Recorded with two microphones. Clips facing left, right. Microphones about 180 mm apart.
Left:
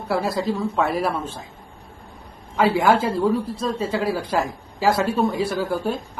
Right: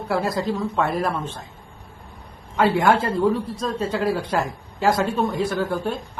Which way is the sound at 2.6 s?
Centre (ahead or behind).